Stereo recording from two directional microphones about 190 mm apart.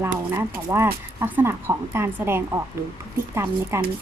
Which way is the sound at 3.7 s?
15° right (ahead or behind).